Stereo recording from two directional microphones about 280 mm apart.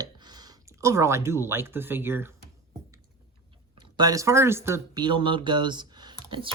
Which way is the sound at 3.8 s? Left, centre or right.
Centre.